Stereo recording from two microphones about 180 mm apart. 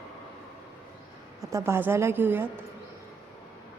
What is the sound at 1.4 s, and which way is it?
A woman's voice, 15° right (ahead or behind).